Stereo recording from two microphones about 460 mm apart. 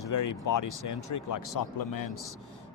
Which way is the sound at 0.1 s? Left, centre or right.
Left.